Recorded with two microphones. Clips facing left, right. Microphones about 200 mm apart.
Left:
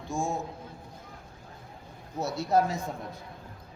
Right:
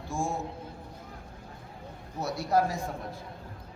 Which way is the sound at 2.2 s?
25° left (ahead or behind).